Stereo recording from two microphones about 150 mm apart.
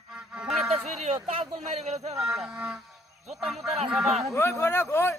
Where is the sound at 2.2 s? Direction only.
5° right (ahead or behind).